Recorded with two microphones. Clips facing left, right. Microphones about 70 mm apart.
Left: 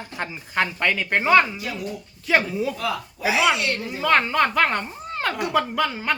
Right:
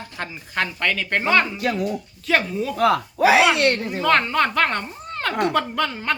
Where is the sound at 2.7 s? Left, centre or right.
Right.